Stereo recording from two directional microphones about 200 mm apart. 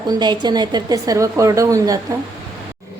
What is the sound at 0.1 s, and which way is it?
A woman's voice, 20° right (ahead or behind).